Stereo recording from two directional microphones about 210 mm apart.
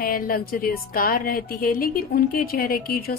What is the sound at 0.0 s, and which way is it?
Speech, 45° left (ahead or behind).